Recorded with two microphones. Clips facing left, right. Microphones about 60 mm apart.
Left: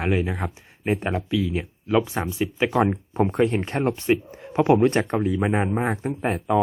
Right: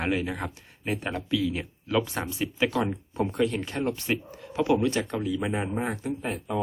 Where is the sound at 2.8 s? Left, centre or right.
Left.